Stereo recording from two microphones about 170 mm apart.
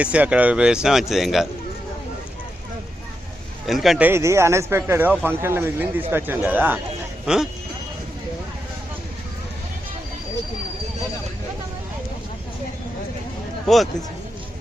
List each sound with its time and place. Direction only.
0.0 s speech: 5° right (ahead or behind)
3.7 s speech: centre (ahead or behind)